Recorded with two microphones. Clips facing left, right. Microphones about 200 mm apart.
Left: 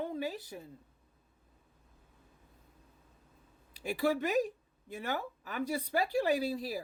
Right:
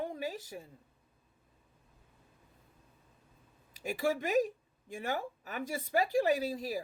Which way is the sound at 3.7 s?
45° right (ahead or behind).